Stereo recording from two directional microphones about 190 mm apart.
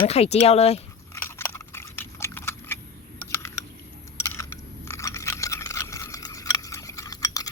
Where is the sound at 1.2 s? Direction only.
15° left (ahead or behind).